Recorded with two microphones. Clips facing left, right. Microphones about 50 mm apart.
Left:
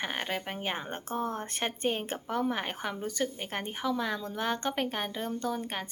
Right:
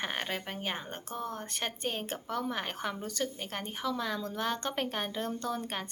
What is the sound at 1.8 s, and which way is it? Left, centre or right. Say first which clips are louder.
Speech: left 5 dB; centre.